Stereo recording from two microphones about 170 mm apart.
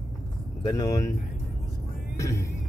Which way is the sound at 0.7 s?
20° left (ahead or behind).